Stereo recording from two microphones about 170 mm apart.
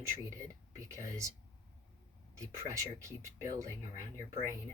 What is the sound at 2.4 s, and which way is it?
Speech, 20° right (ahead or behind).